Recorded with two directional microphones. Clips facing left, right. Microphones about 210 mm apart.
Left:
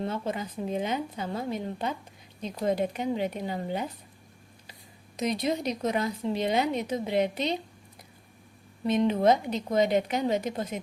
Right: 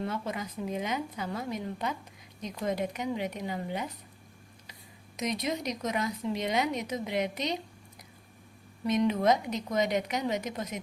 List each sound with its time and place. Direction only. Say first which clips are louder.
0.0 s speech: left 3 dB; 30° left (ahead or behind)
5.1 s speech: left 4 dB; 30° left (ahead or behind)
8.8 s speech: left 3 dB; 30° left (ahead or behind)